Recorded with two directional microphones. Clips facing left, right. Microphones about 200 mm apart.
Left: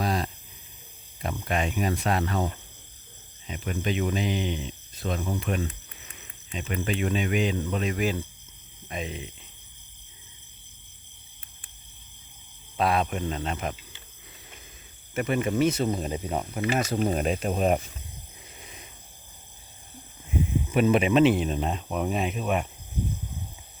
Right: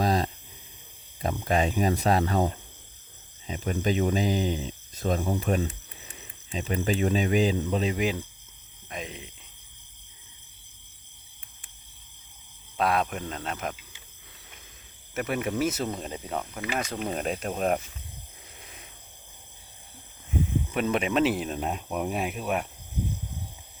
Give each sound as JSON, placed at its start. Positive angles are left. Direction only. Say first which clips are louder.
{"t": 0.0, "sound": "cricket", "louder": "right 3 dB", "side_deg": -40}
{"t": 1.2, "sound": "speech", "louder": "right 3 dB", "side_deg": -35}
{"t": 8.9, "sound": "speech", "louder": "left 3 dB", "side_deg": 0}
{"t": 12.7, "sound": "speech", "louder": "left 1 dB", "side_deg": 0}
{"t": 15.1, "sound": "speech", "louder": "left 3 dB", "side_deg": 0}
{"t": 16.6, "sound": "speech", "louder": "left 6 dB", "side_deg": 30}
{"t": 17.2, "sound": "speech", "louder": "left 3 dB", "side_deg": 0}
{"t": 18.6, "sound": "a sound", "louder": "left 2 dB", "side_deg": 0}
{"t": 20.7, "sound": "speech", "louder": "left 5 dB", "side_deg": 5}